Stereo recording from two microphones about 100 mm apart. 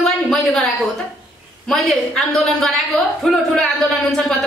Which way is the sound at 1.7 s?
Centre (ahead or behind).